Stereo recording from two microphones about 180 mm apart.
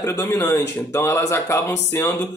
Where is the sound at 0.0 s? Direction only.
15° left (ahead or behind).